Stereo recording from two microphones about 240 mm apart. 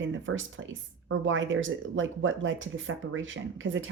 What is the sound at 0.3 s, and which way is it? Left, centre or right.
Speech, right.